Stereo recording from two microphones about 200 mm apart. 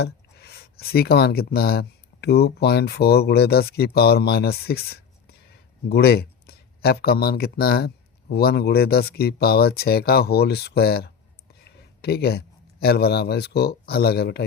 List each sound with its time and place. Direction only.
0.0 s a man's voice: 55° left (ahead or behind)